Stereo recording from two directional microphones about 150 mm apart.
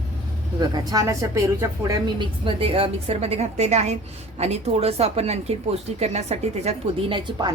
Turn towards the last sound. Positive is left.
turn(degrees=-30)  # may be behind; listen again after turning